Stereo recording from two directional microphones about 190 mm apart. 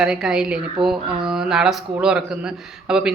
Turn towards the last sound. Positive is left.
turn(degrees=-5)  # may be behind; listen again after turning